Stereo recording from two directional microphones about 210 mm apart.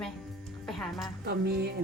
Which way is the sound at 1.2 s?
50° right (ahead or behind).